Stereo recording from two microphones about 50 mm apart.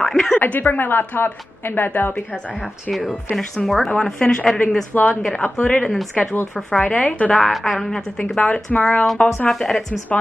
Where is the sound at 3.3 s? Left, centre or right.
Centre.